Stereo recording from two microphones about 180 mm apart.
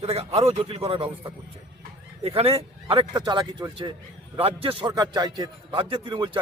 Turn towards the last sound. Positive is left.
turn(degrees=-25)  # may be behind; listen again after turning